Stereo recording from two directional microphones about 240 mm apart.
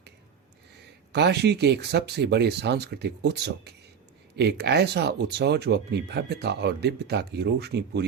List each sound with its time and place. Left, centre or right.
1.1 s speech: right